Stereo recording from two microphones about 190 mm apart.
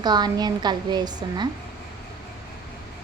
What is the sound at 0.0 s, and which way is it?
A woman's voice, 20° right (ahead or behind).